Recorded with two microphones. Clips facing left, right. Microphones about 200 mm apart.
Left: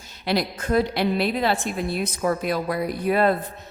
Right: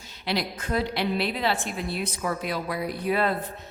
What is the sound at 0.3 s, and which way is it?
A woman's voice, 45° left (ahead or behind).